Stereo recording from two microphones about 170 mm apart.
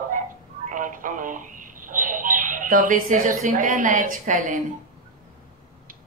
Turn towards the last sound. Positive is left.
turn(degrees=-50)  # may be behind; listen again after turning